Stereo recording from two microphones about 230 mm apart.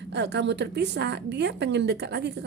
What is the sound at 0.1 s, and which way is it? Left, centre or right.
Speech, right.